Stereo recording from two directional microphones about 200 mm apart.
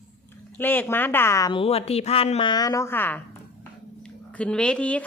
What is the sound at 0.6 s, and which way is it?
A woman's voice, 10° left (ahead or behind).